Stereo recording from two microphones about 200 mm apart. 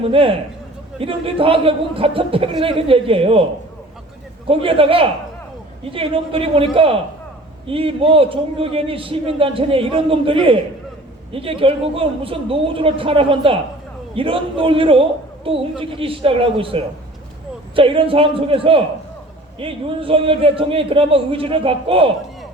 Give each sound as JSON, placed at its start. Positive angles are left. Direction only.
{"t": 0.1, "sound": "a man's voice", "side_deg": -25}
{"t": 4.4, "sound": "a man's voice", "side_deg": -25}
{"t": 7.7, "sound": "a man's voice", "side_deg": -25}